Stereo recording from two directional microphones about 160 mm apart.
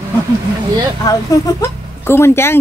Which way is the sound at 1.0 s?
20° left (ahead or behind).